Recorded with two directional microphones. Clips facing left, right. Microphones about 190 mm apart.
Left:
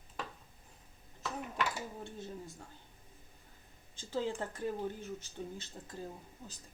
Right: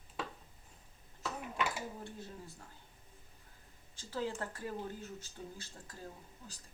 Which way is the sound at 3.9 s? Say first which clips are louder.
Left 3 dB; 20° left (ahead or behind).